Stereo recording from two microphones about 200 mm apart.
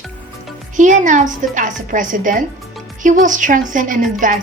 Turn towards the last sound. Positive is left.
turn(degrees=-40)  # may be behind; listen again after turning